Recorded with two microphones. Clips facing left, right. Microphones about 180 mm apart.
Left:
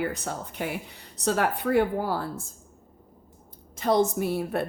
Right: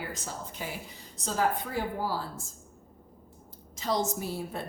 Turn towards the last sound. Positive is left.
turn(degrees=65)  # may be behind; listen again after turning